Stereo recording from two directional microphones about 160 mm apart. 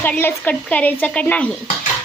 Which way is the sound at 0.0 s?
10° left (ahead or behind).